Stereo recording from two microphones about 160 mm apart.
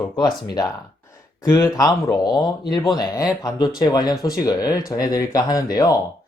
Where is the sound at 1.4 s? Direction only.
20° left (ahead or behind).